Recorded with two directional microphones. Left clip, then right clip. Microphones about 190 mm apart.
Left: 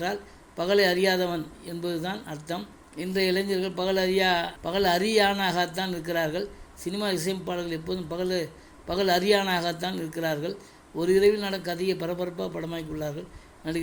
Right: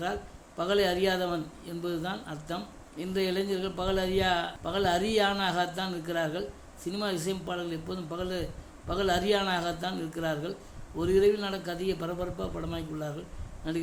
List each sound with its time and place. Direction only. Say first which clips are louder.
0.0 s a man's voice: left 3 dB; 15° left (ahead or behind)